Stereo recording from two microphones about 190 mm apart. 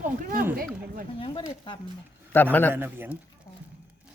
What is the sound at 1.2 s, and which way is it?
Speech, 25° left (ahead or behind).